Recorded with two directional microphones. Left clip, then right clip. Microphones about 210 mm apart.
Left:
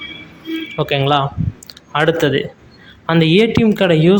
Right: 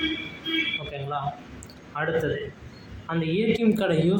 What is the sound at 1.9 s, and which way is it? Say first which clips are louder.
Speech: left 12 dB; 50° left (ahead or behind).